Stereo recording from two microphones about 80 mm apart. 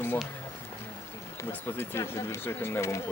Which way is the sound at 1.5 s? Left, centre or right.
Left.